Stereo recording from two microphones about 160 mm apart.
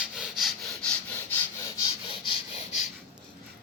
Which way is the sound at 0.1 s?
Centre (ahead or behind).